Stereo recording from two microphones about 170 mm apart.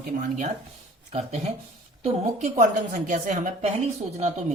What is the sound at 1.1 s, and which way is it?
A woman's voice, 40° right (ahead or behind).